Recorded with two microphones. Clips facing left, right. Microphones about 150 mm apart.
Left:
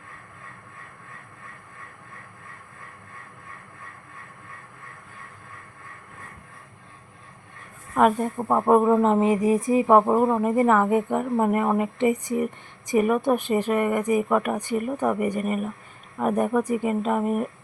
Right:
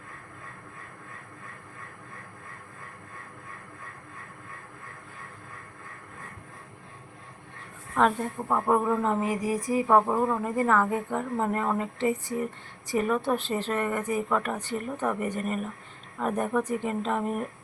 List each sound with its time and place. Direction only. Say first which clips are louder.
7.9 s a woman's voice: left 5 dB; 15° left (ahead or behind)
8.4 s a sound: left 6 dB; 30° left (ahead or behind)
9.9 s a woman's voice: left 5 dB; 25° left (ahead or behind); by 17.5 s 5° left (ahead or behind)